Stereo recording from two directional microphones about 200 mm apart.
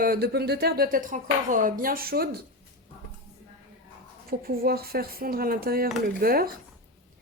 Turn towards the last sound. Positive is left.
turn(degrees=-45)  # may be behind; listen again after turning